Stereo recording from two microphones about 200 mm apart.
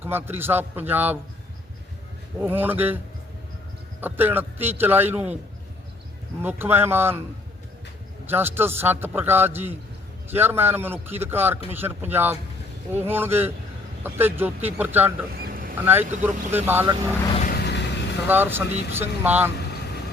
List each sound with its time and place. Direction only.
0.0 s a man's voice: 10° right (ahead or behind)
2.4 s a man's voice: 10° right (ahead or behind)
4.0 s a man's voice: 10° right (ahead or behind)
6.4 s a man's voice: 10° right (ahead or behind)
8.3 s a man's voice: 10° right (ahead or behind)
15.4 s boat: 45° right (ahead or behind)
15.8 s a man's voice: 10° right (ahead or behind)
17.4 s vehicle: 55° left (ahead or behind)
18.3 s a man's voice: 10° right (ahead or behind)